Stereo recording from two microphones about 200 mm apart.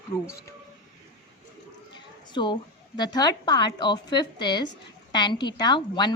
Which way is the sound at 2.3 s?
25° left (ahead or behind).